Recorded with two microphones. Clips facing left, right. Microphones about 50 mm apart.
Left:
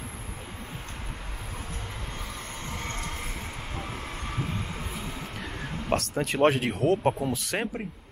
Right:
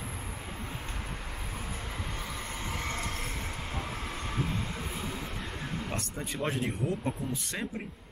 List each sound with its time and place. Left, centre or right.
2.7 s train: centre
4.3 s vehicle: centre
5.9 s speech: left